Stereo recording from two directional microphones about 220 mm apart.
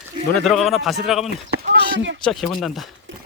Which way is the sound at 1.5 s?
50° right (ahead or behind).